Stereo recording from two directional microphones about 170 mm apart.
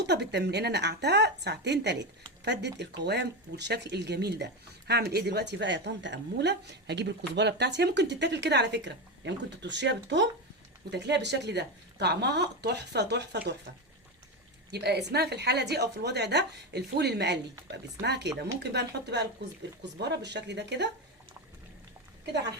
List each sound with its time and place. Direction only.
0.0 s a woman's voice: 80° right
14.7 s a woman's voice: 75° right (ahead or behind)